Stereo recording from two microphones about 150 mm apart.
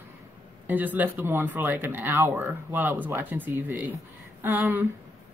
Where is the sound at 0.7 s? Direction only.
10° right (ahead or behind).